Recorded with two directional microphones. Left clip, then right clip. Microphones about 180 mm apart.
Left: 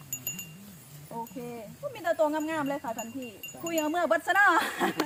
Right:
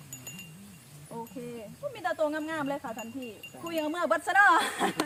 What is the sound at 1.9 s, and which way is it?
Speech, 35° right (ahead or behind).